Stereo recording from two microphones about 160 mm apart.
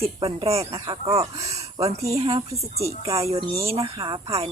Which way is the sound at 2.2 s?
35° right (ahead or behind).